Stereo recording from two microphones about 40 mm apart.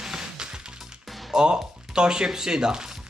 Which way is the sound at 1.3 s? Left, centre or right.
Right.